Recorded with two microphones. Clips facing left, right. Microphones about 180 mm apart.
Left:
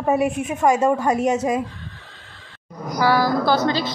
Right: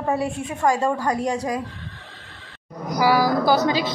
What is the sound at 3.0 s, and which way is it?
Speech, 10° right (ahead or behind).